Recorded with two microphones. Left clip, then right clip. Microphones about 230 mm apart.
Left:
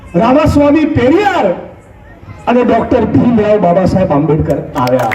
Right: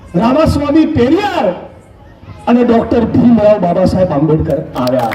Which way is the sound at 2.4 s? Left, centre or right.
Right.